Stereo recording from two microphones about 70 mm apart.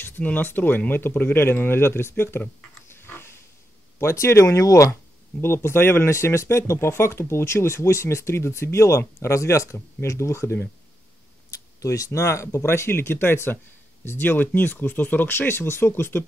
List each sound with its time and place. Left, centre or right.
0.0 s speech: left
2.9 s pig: left
4.0 s speech: left
5.4 s speech: left
11.8 s speech: left